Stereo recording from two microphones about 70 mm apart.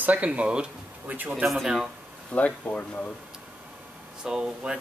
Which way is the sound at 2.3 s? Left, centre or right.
Left.